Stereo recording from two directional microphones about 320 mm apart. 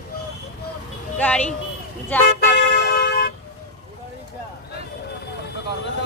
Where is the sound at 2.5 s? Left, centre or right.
Left.